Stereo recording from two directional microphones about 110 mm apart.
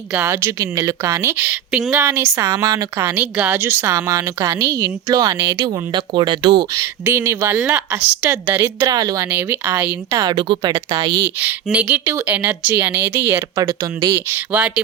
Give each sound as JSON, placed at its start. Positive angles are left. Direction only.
{"t": 0.3, "sound": "a woman's voice", "side_deg": -25}
{"t": 5.6, "sound": "speech", "side_deg": -45}
{"t": 7.0, "sound": "a woman's voice", "side_deg": -20}
{"t": 8.9, "sound": "speech", "side_deg": -35}
{"t": 9.3, "sound": "speech", "side_deg": -15}
{"t": 10.1, "sound": "speech", "side_deg": -35}
{"t": 11.3, "sound": "speech", "side_deg": -15}
{"t": 13.6, "sound": "a woman's voice", "side_deg": -30}